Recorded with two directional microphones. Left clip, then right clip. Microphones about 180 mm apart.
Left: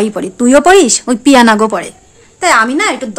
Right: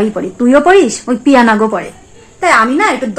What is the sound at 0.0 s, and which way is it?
A woman's voice, 40° left (ahead or behind).